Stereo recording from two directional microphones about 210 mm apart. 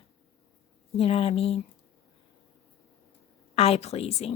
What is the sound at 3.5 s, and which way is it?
Speech, 30° left (ahead or behind).